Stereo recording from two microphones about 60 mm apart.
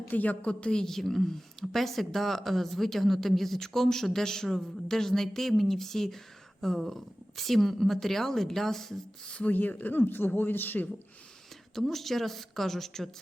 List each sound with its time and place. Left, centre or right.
0.1 s a woman's voice: left; by 9.3 s centre
9.3 s speech: left
11.7 s a woman's voice: centre